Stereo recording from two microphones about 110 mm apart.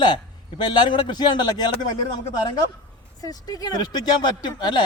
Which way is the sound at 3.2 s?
35° left (ahead or behind).